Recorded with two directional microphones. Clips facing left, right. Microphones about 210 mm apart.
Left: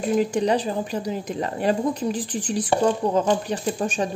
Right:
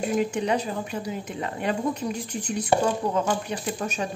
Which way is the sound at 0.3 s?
35° left (ahead or behind).